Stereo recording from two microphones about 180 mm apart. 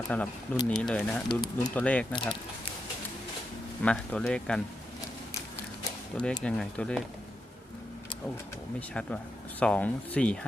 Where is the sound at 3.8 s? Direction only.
5° left (ahead or behind).